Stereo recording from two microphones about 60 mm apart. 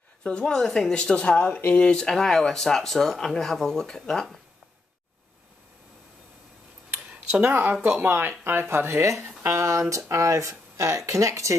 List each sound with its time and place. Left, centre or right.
0.2 s speech: centre
7.3 s speech: right
9.0 s speech: right